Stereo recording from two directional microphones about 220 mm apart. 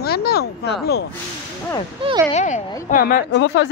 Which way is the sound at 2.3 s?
35° left (ahead or behind).